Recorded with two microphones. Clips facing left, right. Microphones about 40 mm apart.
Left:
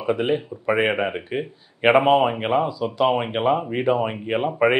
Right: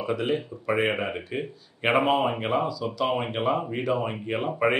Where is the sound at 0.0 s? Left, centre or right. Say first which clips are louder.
Left 5 dB; left.